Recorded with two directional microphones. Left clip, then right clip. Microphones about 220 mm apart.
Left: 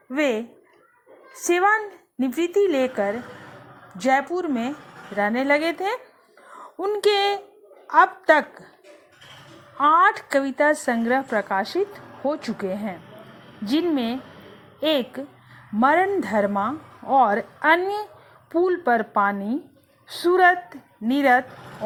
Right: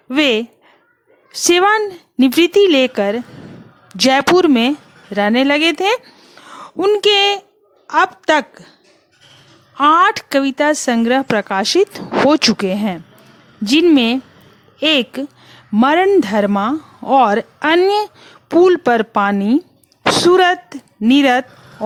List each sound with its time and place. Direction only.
0.1 s a woman's voice: 40° right (ahead or behind)
9.7 s speech: 35° right (ahead or behind)